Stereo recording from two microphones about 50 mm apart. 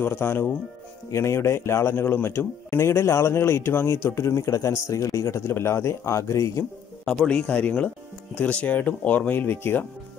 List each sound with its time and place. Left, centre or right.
0.0 s speech: left
1.1 s a man's voice: left
7.2 s speech: left